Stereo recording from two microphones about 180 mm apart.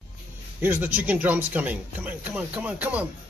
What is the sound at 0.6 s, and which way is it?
Speech, 10° right (ahead or behind).